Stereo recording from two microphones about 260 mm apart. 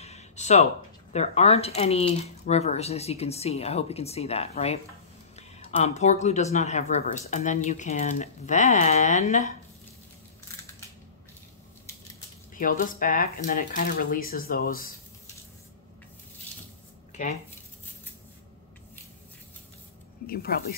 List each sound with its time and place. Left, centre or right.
0.0 s a sound: left
1.1 s speech: left
12.5 s speech: left
17.1 s speech: left
20.2 s speech: left